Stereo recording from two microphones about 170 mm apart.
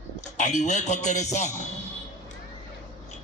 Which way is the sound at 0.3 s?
45° left (ahead or behind).